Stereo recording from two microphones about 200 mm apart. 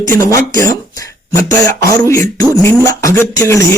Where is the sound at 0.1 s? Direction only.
15° left (ahead or behind).